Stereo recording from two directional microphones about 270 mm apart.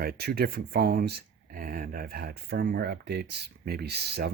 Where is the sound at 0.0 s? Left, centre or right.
Right.